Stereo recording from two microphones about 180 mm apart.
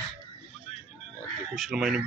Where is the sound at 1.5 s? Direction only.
Centre (ahead or behind).